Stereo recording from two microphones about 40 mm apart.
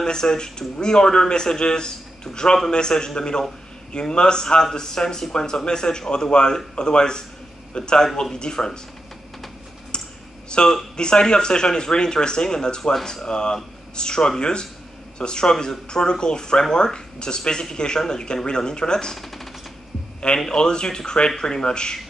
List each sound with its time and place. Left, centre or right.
0.0 s speech: centre
9.9 s a sound: left
10.5 s speech: left
19.1 s speech: centre
20.5 s speech: left